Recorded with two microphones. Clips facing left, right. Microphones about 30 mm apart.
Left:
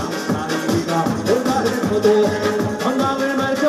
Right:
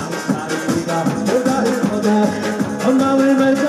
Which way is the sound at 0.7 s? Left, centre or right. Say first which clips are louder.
Right 1 dB; centre.